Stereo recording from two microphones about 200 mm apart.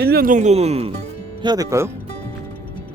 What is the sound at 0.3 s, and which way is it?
Speech, 35° right (ahead or behind).